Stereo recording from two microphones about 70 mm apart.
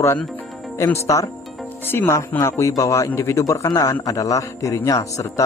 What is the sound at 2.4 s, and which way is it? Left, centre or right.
Speech, left.